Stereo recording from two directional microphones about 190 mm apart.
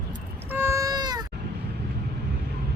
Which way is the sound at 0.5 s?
15° right (ahead or behind).